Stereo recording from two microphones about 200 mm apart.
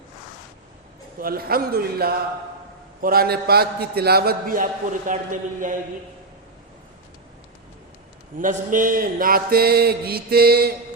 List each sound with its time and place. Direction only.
1.2 s a man's voice: 50° right (ahead or behind)
8.4 s a man's voice: 40° right (ahead or behind)